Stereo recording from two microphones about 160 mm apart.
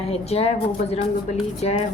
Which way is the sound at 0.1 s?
40° left (ahead or behind).